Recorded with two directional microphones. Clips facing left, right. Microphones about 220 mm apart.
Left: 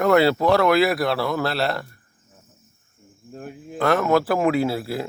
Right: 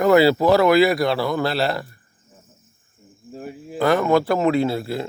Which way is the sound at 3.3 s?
5° right (ahead or behind).